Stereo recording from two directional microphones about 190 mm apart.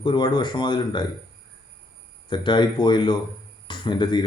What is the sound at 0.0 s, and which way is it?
Speech, 25° left (ahead or behind).